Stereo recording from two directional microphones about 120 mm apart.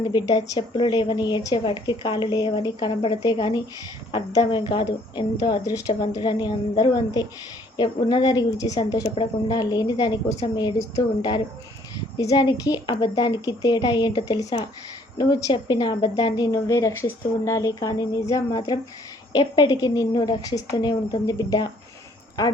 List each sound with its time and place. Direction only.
0.0 s speech: 35° left (ahead or behind)